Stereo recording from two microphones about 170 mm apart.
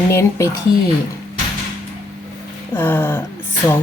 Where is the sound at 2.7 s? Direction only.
10° left (ahead or behind).